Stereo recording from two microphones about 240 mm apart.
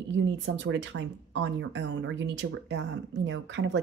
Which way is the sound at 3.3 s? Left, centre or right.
Right.